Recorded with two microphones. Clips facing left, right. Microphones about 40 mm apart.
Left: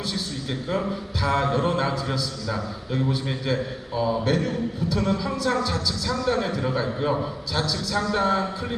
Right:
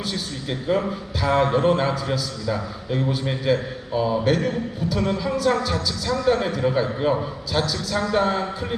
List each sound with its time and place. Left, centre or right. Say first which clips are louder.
0.7 s a man's voice: right 5 dB; centre